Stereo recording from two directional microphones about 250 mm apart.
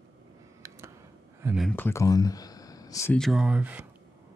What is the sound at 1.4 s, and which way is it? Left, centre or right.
Speech, centre.